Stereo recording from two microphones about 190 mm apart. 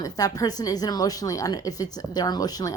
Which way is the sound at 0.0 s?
20° left (ahead or behind).